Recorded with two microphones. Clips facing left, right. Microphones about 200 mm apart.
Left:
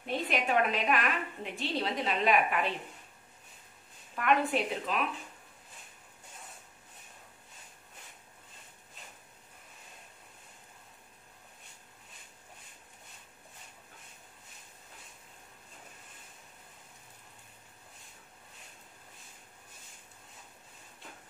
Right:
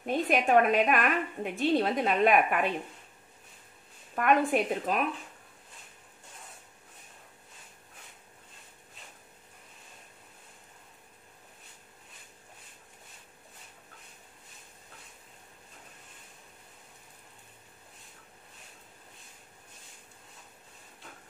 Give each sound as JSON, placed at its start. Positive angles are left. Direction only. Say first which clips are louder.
{"t": 0.0, "sound": "a woman's voice", "louder": "right 5 dB", "side_deg": -50}
{"t": 4.1, "sound": "a woman's voice", "louder": "right 3 dB", "side_deg": -45}